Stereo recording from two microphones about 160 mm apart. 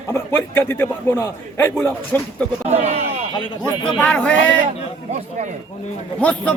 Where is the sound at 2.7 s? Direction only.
45° right (ahead or behind).